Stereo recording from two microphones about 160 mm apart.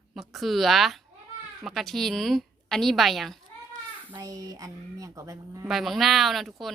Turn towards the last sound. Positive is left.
turn(degrees=0)  # may be behind; listen again after turning